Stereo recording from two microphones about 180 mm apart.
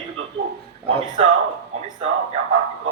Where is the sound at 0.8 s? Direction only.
35° right (ahead or behind).